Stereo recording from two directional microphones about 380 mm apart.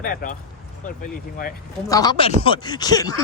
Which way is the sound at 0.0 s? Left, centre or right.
Left.